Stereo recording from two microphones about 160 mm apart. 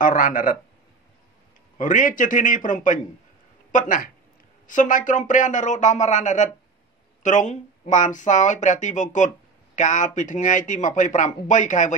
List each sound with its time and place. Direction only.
0.0 s a man's voice: 55° left (ahead or behind)
1.8 s a man's voice: 55° left (ahead or behind)